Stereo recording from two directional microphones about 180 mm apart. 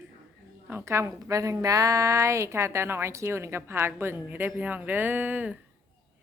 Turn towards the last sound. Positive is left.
turn(degrees=-10)  # may be behind; listen again after turning